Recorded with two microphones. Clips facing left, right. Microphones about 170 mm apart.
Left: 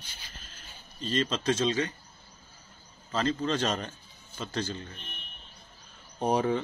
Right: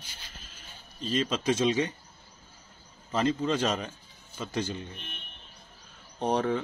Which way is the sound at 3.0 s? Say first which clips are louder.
Right 2 dB; 15° right (ahead or behind).